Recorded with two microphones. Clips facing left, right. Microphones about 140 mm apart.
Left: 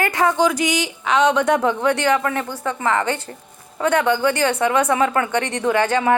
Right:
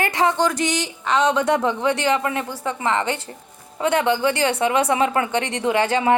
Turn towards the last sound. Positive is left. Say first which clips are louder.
# left 1 dB
turn(degrees=-25)  # may be behind; listen again after turning